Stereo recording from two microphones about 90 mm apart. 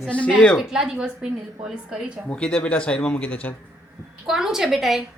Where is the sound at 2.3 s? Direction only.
10° left (ahead or behind).